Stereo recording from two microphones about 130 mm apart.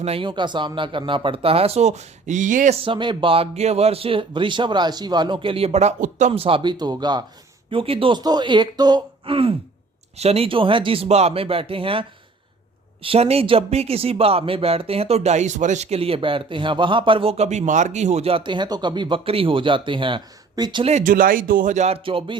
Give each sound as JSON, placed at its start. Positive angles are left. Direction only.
{"t": 0.0, "sound": "speech", "side_deg": -45}
{"t": 2.8, "sound": "speech", "side_deg": -40}
{"t": 6.3, "sound": "speech", "side_deg": -45}
{"t": 7.7, "sound": "speech", "side_deg": -45}
{"t": 8.2, "sound": "speech", "side_deg": -30}
{"t": 20.8, "sound": "speech", "side_deg": -75}
{"t": 22.0, "sound": "speech", "side_deg": -40}